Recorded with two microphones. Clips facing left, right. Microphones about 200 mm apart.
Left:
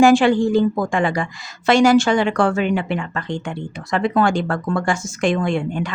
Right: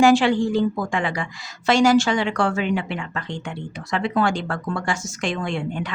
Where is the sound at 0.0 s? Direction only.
50° left (ahead or behind).